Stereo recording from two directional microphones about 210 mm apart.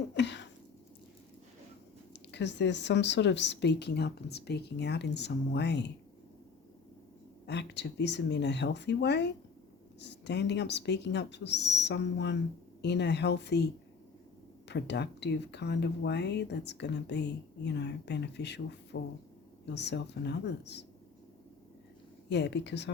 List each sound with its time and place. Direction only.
0.2 s speech: 55° left (ahead or behind)
2.1 s speech: 55° left (ahead or behind)
7.4 s speech: 55° left (ahead or behind)
14.7 s speech: 55° left (ahead or behind)
22.3 s speech: 55° left (ahead or behind)